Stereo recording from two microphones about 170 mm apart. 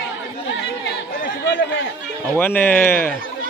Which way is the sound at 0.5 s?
90° left.